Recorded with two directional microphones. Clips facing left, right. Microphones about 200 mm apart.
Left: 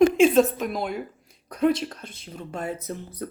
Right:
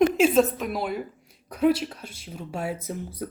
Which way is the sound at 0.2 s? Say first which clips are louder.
Left 2 dB; centre (ahead or behind).